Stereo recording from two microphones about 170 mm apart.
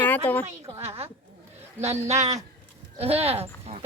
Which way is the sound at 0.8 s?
35° right (ahead or behind).